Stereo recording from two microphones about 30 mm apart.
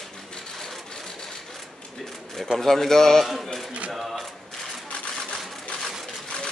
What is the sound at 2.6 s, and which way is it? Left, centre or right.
Speech, centre.